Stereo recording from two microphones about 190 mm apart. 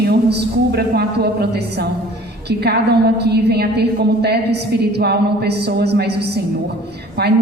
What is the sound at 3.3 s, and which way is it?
A woman's voice, 60° right (ahead or behind).